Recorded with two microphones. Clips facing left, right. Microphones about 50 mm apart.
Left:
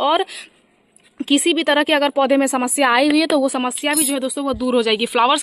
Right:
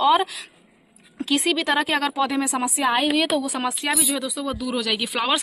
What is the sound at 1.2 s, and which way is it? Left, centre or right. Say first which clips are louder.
Speech: left 6 dB; left.